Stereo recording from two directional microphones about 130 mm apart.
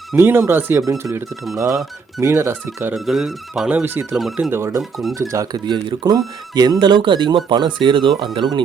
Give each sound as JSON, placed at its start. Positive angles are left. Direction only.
{"t": 0.2, "sound": "speech", "side_deg": -20}
{"t": 2.9, "sound": "speech", "side_deg": 0}
{"t": 4.5, "sound": "speech", "side_deg": -20}
{"t": 4.8, "sound": "speech", "side_deg": 0}
{"t": 5.1, "sound": "speech", "side_deg": -25}